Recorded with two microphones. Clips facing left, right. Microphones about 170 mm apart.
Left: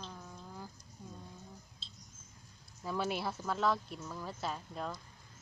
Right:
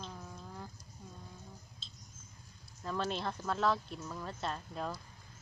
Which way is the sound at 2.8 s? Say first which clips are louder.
Left 1 dB; 10° left (ahead or behind).